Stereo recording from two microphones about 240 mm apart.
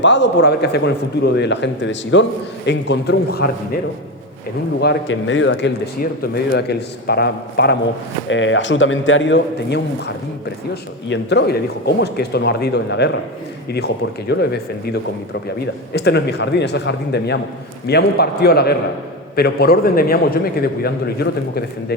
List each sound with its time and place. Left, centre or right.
0.0 s speech: left
4.8 s speech: left
11.1 s a man's voice: left